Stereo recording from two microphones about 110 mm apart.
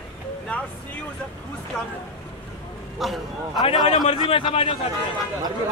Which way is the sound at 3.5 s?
40° left (ahead or behind).